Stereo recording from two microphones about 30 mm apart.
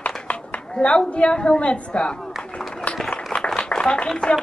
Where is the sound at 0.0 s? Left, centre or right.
Left.